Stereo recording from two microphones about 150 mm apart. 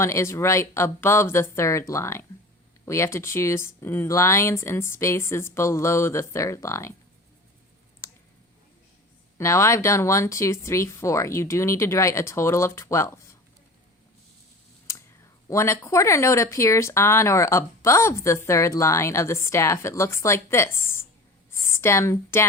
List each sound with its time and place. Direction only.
0.0 s speech: 20° left (ahead or behind)
8.0 s clicking: 20° left (ahead or behind)
9.4 s speech: 20° left (ahead or behind)
15.4 s speech: 20° left (ahead or behind)